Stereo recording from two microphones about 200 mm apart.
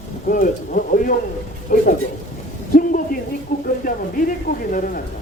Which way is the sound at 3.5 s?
45° left (ahead or behind).